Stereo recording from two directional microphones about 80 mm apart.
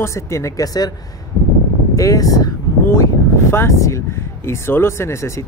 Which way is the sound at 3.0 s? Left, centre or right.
Left.